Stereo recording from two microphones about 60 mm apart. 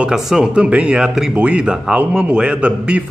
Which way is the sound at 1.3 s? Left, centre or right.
Centre.